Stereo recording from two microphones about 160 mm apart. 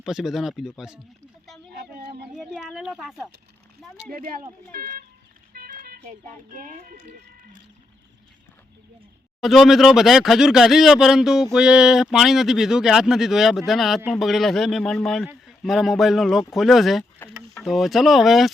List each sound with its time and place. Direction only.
0.0 s speech: centre (ahead or behind)
1.8 s a sound: 90° right
2.3 s a sound: centre (ahead or behind)
4.1 s speech: 60° right (ahead or behind)
5.5 s music: 70° right (ahead or behind)
6.1 s speech: 55° right (ahead or behind)
9.4 s speech: centre (ahead or behind)